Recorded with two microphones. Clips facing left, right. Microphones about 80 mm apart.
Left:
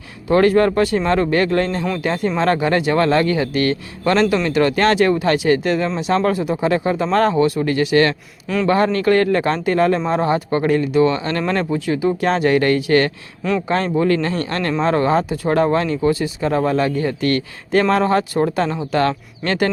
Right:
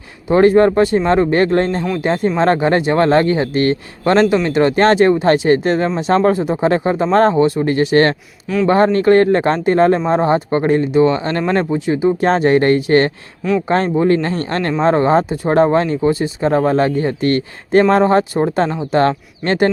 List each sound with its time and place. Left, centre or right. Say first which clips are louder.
0.3 s speech: right 3 dB; right